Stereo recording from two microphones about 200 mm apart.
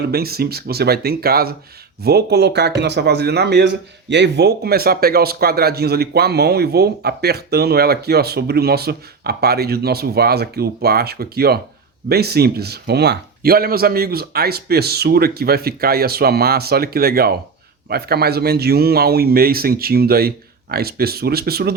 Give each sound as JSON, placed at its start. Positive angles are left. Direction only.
{"t": 0.1, "sound": "speech", "side_deg": -50}